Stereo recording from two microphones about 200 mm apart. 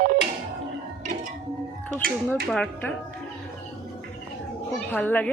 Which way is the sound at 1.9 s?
40° right (ahead or behind).